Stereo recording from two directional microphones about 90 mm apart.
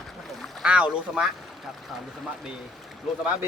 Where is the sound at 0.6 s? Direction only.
10° right (ahead or behind).